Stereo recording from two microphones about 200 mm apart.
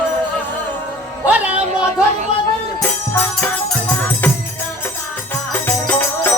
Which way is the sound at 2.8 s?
10° left (ahead or behind).